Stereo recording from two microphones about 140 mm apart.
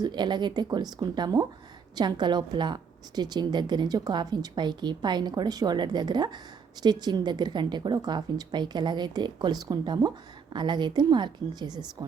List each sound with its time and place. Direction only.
0.0 s a woman's voice: 30° right (ahead or behind)